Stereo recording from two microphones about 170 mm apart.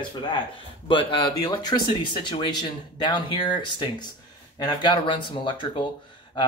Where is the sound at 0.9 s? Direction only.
30° left (ahead or behind).